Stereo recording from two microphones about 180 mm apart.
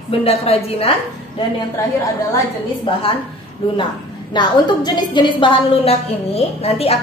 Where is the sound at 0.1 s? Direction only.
35° left (ahead or behind).